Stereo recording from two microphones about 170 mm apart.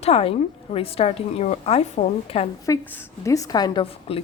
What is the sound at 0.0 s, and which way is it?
A woman's voice, 35° left (ahead or behind).